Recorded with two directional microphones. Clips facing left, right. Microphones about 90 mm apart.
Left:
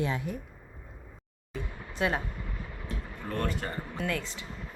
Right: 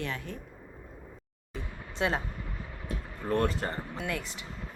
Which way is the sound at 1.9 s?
25° right (ahead or behind).